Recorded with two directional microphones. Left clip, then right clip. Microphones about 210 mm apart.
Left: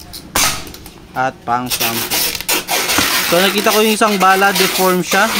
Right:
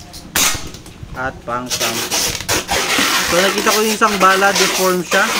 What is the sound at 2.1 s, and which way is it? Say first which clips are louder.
Filing: even; 35° left (ahead or behind).